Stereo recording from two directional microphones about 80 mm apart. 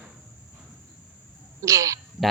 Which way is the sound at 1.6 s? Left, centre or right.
Right.